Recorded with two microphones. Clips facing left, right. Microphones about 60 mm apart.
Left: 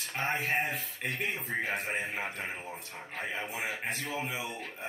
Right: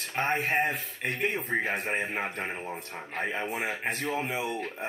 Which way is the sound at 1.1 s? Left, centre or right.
Right.